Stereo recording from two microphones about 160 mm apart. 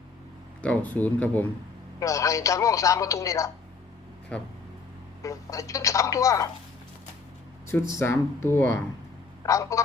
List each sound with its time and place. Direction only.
0.6 s speech: 10° left (ahead or behind)
2.0 s a woman's voice: 20° left (ahead or behind)
5.2 s a woman's voice: 20° left (ahead or behind)
7.7 s a woman's voice: 15° left (ahead or behind)